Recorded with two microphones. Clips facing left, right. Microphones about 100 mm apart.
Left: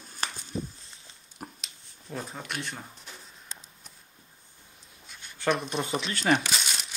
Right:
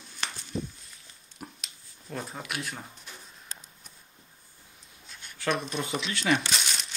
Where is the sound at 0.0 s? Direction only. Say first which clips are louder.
Left 2 dB; 40° left (ahead or behind).